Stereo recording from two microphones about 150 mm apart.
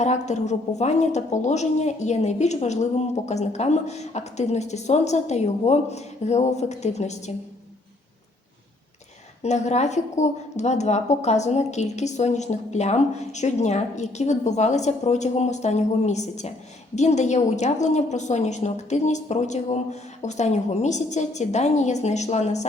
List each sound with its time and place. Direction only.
0.0 s a woman's voice: 50° left (ahead or behind)
9.4 s a woman's voice: 50° left (ahead or behind)